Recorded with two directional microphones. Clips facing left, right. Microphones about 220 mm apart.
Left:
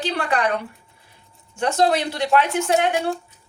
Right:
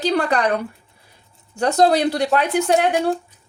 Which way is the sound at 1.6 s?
40° right (ahead or behind).